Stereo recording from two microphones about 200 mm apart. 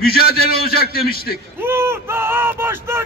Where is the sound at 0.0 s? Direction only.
50° left (ahead or behind).